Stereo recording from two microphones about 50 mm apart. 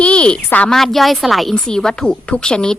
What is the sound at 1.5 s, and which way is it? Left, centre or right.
A woman's voice, centre.